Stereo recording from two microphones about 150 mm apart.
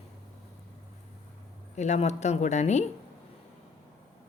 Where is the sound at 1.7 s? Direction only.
50° left (ahead or behind).